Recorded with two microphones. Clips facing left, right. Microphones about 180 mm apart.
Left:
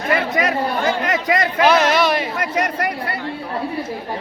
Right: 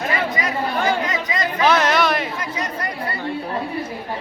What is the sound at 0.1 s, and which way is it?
Chatter, 65° left (ahead or behind).